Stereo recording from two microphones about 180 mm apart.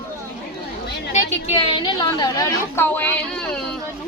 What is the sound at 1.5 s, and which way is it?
A woman's voice, 25° left (ahead or behind).